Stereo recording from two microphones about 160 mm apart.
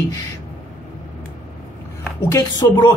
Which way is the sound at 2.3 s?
20° left (ahead or behind).